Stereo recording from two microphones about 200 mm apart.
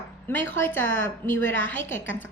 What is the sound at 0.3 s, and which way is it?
A woman's voice, 10° left (ahead or behind).